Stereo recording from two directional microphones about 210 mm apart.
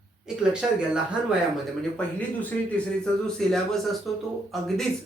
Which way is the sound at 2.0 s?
5° left (ahead or behind).